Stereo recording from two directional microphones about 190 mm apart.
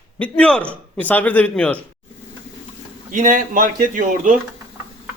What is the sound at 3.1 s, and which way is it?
A man's voice, 40° right (ahead or behind).